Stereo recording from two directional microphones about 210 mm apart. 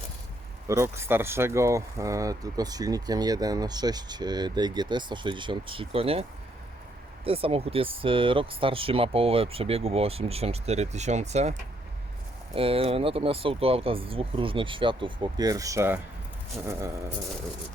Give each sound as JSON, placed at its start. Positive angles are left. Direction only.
{"t": 0.7, "sound": "speech", "side_deg": -10}
{"t": 7.3, "sound": "speech", "side_deg": -25}
{"t": 12.5, "sound": "speech", "side_deg": -25}